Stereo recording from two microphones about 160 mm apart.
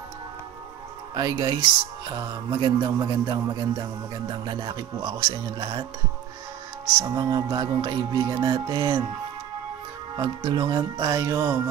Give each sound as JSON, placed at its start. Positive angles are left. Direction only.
{"t": 1.1, "sound": "music", "side_deg": -25}
{"t": 7.0, "sound": "music", "side_deg": -25}
{"t": 10.1, "sound": "music", "side_deg": -25}